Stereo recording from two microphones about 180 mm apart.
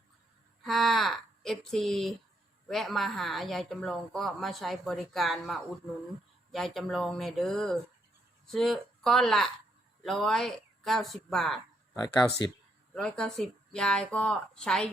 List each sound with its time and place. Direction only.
0.6 s a sound: centre (ahead or behind)
2.6 s speech: centre (ahead or behind)
11.9 s speech: 20° left (ahead or behind)
12.9 s speech: 5° left (ahead or behind)